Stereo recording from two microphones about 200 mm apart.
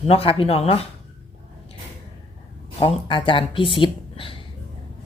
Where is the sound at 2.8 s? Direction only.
25° left (ahead or behind).